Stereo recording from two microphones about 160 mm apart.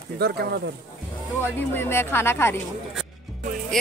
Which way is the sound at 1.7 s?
15° left (ahead or behind).